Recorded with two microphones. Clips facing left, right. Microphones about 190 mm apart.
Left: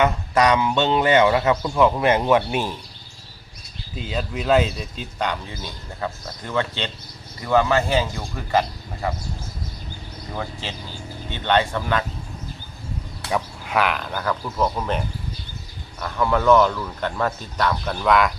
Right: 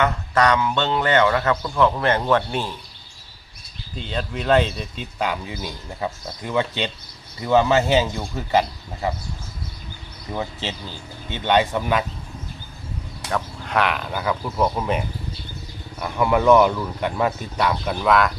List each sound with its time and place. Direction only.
0.0 s speech: 15° left (ahead or behind)
3.9 s speech: 5° left (ahead or behind); by 9.1 s 15° right (ahead or behind)
10.3 s speech: 20° right (ahead or behind)
13.3 s speech: 5° left (ahead or behind)